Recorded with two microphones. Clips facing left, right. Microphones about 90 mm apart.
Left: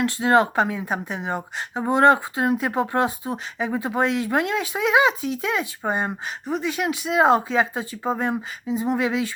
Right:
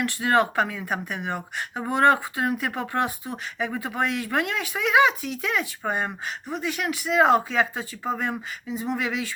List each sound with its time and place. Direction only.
0.0 s speech: 25° left (ahead or behind)